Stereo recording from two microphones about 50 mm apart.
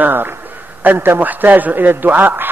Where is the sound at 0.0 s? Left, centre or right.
Right.